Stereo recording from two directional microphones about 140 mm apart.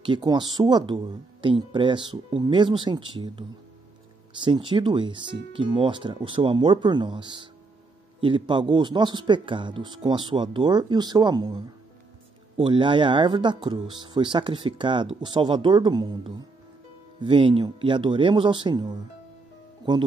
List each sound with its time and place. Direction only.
0.0 s speech: 35° right (ahead or behind)